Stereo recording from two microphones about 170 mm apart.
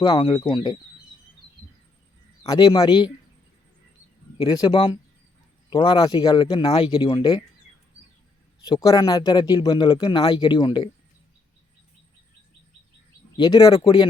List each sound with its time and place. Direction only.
0.0 s a man's voice: 25° left (ahead or behind)
2.4 s a man's voice: 25° left (ahead or behind)
4.4 s a man's voice: 25° left (ahead or behind)
8.6 s a man's voice: 25° left (ahead or behind)
13.3 s a man's voice: 25° left (ahead or behind)